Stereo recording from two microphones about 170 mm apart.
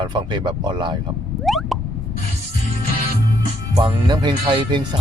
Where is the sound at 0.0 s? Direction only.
25° right (ahead or behind).